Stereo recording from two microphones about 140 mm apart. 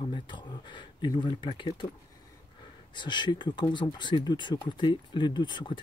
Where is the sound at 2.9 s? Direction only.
35° left (ahead or behind).